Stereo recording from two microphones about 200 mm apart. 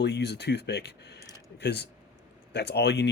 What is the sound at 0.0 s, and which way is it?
Speech, 60° left (ahead or behind).